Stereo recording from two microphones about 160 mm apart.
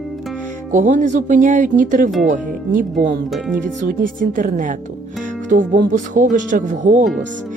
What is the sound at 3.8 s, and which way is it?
Speech, 55° right (ahead or behind).